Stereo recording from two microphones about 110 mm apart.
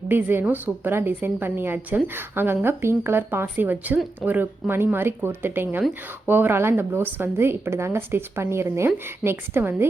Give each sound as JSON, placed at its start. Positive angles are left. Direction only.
{"t": 0.1, "sound": "a woman's voice", "side_deg": -20}